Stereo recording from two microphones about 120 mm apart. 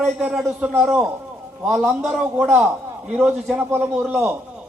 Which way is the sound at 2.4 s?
10° right (ahead or behind).